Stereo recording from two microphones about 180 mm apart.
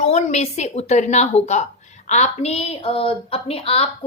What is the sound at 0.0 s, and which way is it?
Speech, 40° left (ahead or behind).